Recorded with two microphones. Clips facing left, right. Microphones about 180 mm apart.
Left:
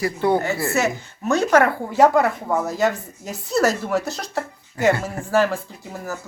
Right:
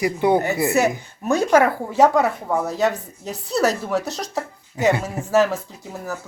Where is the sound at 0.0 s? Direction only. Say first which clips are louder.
Right 2 dB; 20° right (ahead or behind); by 2.6 s centre (ahead or behind).